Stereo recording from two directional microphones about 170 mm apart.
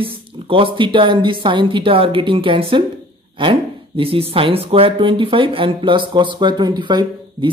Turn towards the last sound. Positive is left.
turn(degrees=-25)  # may be behind; listen again after turning